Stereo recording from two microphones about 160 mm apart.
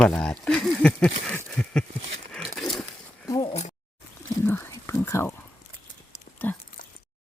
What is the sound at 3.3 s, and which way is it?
Speech, 25° left (ahead or behind).